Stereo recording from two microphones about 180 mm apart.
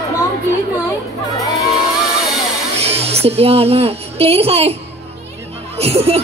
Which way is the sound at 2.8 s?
35° right (ahead or behind).